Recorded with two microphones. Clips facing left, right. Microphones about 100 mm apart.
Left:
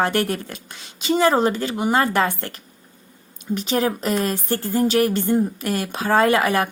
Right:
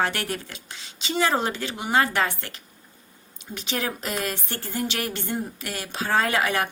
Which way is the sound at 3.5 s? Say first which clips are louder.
Left 8 dB; 45° left (ahead or behind).